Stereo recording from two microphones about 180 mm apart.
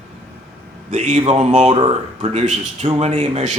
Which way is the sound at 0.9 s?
40° right (ahead or behind).